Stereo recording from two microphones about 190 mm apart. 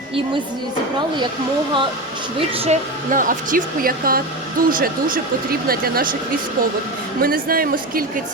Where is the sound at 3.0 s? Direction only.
45° right (ahead or behind).